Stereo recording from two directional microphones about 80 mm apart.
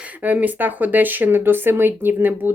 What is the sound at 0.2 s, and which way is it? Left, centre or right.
Speech, right.